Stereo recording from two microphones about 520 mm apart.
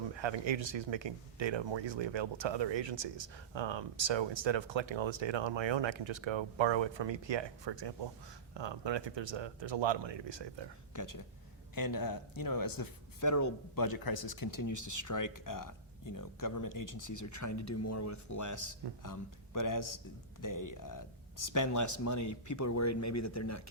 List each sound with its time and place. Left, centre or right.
0.2 s speech: right
10.9 s speech: left